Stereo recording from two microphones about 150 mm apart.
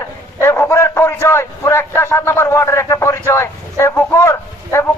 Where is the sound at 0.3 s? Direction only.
15° left (ahead or behind).